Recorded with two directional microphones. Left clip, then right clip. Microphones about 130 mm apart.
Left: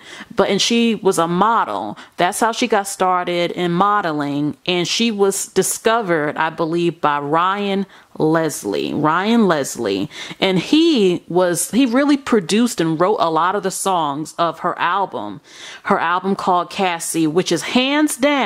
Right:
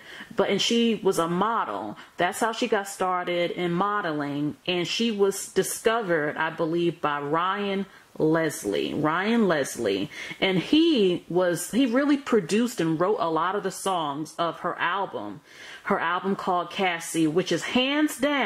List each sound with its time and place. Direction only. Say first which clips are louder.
0.4 s speech: left 7 dB; 35° left (ahead or behind)